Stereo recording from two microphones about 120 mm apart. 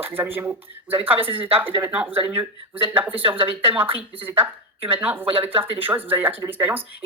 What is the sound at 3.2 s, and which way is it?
Speech, 50° right (ahead or behind).